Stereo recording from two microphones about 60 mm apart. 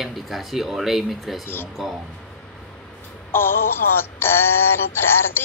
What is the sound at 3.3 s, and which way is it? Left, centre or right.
Synthetic singing, left.